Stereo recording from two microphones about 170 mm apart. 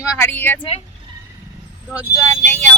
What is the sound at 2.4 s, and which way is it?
Speech, 45° right (ahead or behind).